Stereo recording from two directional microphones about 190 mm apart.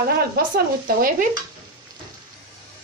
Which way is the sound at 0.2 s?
50° right (ahead or behind).